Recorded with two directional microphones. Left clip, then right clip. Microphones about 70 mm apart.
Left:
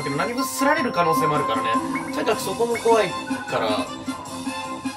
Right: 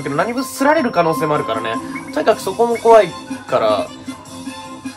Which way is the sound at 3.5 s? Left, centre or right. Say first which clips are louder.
Right 9 dB; centre.